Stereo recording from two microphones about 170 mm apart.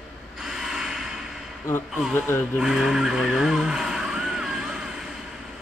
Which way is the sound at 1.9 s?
5° right (ahead or behind).